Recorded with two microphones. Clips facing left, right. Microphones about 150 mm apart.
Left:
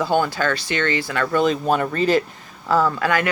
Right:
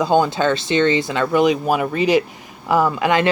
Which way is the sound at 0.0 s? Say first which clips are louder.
Right 4 dB; 20° right (ahead or behind).